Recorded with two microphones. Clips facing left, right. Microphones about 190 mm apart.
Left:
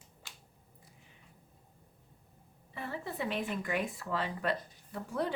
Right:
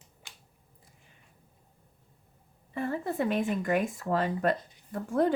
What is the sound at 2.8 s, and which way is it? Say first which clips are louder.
A woman's voice: right 8 dB; 50° right (ahead or behind).